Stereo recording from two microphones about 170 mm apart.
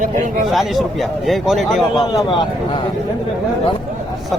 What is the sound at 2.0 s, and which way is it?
Speech, 25° left (ahead or behind).